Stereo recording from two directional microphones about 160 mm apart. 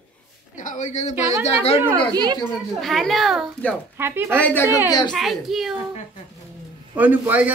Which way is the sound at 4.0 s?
15° right (ahead or behind).